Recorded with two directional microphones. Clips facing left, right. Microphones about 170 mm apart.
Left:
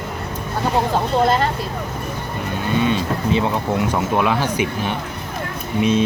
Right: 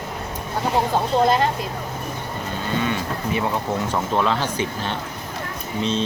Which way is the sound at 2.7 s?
20° left (ahead or behind).